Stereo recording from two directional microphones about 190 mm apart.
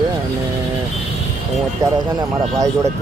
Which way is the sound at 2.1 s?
20° right (ahead or behind).